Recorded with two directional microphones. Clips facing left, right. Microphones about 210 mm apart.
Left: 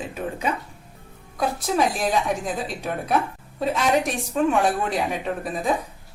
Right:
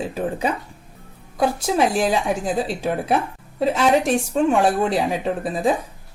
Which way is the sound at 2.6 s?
30° right (ahead or behind).